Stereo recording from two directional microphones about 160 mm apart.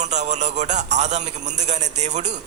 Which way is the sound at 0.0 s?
45° right (ahead or behind).